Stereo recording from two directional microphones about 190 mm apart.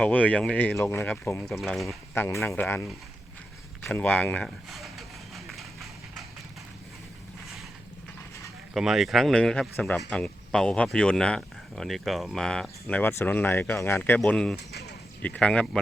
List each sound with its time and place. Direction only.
0.0 s speech: 10° left (ahead or behind)
1.6 s speech: centre (ahead or behind)
2.1 s speech: 15° left (ahead or behind)
3.8 s a sound: 10° left (ahead or behind)
8.7 s speech: centre (ahead or behind)
14.5 s speech: 60° left (ahead or behind)
15.2 s speech: 5° left (ahead or behind)